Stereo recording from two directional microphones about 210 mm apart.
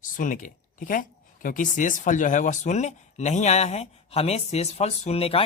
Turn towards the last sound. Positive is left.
turn(degrees=25)  # may be behind; listen again after turning